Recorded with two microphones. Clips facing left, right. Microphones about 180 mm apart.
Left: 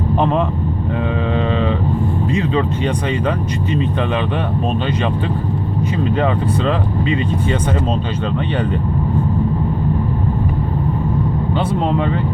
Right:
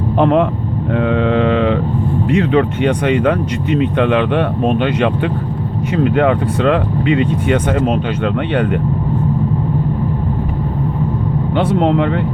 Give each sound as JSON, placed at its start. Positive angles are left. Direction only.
{"t": 0.2, "sound": "speech", "side_deg": -80}
{"t": 1.1, "sound": "mantra", "side_deg": -75}
{"t": 2.3, "sound": "speech", "side_deg": -70}
{"t": 11.5, "sound": "speech", "side_deg": -75}